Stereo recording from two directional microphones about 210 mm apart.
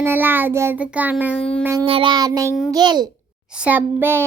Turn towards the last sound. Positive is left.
turn(degrees=-10)  # may be behind; listen again after turning